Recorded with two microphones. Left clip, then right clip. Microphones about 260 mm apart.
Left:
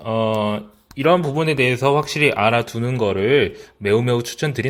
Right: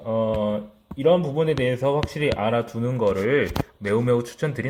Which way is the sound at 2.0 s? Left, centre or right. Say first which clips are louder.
Left 7 dB; left.